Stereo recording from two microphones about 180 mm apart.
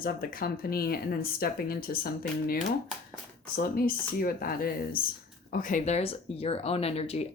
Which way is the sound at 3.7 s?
55° left (ahead or behind).